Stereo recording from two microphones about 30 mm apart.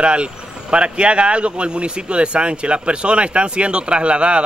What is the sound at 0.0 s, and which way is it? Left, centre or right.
Speech, right.